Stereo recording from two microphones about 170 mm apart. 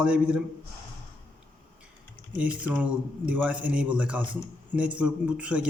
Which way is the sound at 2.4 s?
5° right (ahead or behind).